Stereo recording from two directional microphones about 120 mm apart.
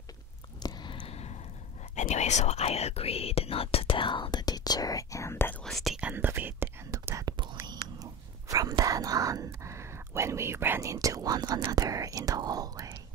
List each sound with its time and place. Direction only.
0.6 s a sound: 35° left (ahead or behind)
1.1 s gasp: 65° left (ahead or behind)
2.0 s speech: 75° left (ahead or behind); by 5.6 s 20° left (ahead or behind)
5.6 s speech: centre (ahead or behind)
5.9 s whispering: 15° right (ahead or behind); by 8.7 s 30° right (ahead or behind)
8.8 s speech: 30° right (ahead or behind)